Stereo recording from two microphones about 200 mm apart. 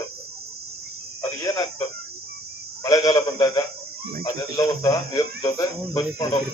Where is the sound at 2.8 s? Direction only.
15° left (ahead or behind).